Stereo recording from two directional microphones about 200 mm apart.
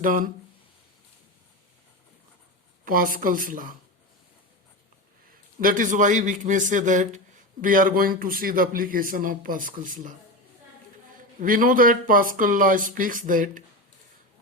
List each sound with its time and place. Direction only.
0.0 s speech: 45° right (ahead or behind)
2.8 s speech: 45° right (ahead or behind)
5.3 s a man's voice: 45° right (ahead or behind)
11.3 s speech: 40° right (ahead or behind)